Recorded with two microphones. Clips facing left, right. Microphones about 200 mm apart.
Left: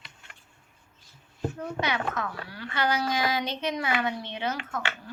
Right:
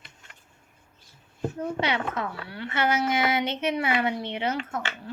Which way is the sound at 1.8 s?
30° right (ahead or behind).